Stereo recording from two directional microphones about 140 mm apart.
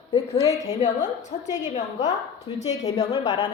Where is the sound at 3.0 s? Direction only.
40° left (ahead or behind).